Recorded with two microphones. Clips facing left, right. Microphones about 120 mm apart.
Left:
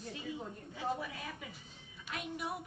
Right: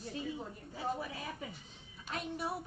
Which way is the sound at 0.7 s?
35° right (ahead or behind).